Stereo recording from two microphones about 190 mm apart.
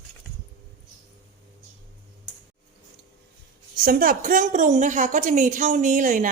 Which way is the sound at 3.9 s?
50° right (ahead or behind).